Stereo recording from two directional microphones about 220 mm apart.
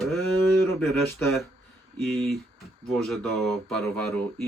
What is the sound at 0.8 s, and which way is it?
Speech, 10° left (ahead or behind).